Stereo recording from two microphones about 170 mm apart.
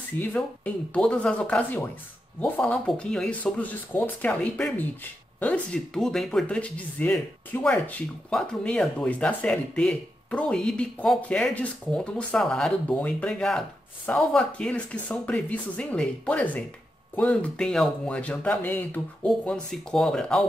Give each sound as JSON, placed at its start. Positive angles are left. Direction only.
{"t": 0.2, "sound": "speech", "side_deg": 10}